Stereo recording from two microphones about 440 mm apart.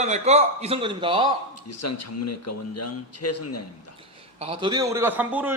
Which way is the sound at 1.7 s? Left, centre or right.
Left.